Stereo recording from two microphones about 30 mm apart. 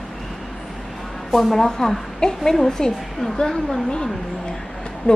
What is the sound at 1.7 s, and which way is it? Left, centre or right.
A woman's voice, centre.